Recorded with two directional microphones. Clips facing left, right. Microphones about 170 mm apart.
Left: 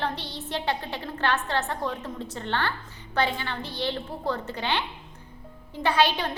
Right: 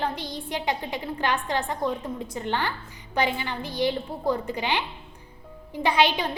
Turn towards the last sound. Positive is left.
turn(degrees=-15)  # may be behind; listen again after turning